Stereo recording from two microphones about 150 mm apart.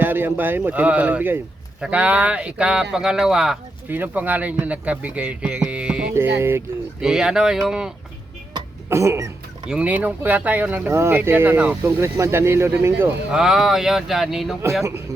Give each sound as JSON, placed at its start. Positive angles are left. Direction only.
{"t": 0.0, "sound": "speech", "side_deg": -15}
{"t": 7.0, "sound": "speech", "side_deg": -5}
{"t": 8.9, "sound": "a sound", "side_deg": -20}
{"t": 9.6, "sound": "speech", "side_deg": -10}